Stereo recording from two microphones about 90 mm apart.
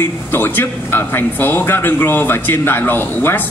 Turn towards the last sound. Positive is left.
turn(degrees=20)  # may be behind; listen again after turning